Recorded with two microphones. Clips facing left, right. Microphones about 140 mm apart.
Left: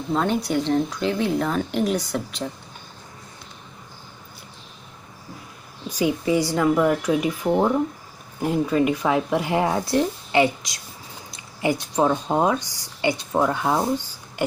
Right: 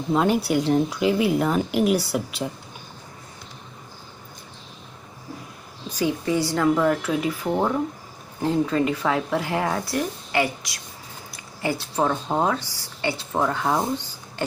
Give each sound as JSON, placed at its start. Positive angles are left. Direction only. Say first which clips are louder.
{"t": 0.1, "sound": "speech", "louder": "right 2 dB", "side_deg": -5}
{"t": 5.9, "sound": "speech", "louder": "left 2 dB", "side_deg": 15}